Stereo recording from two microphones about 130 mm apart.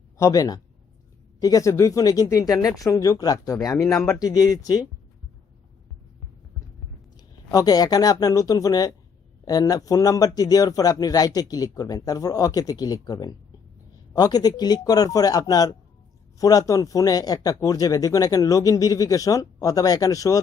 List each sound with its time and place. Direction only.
0.2 s speech: 25° left (ahead or behind)
3.8 s speech: 5° left (ahead or behind)
4.0 s speech: 25° left (ahead or behind)
7.5 s speech: 30° left (ahead or behind)